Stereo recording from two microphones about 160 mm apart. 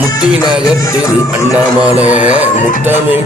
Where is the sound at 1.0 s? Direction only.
20° left (ahead or behind).